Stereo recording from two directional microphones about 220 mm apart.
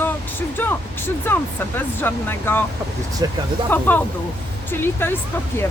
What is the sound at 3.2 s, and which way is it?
Speech, 15° right (ahead or behind).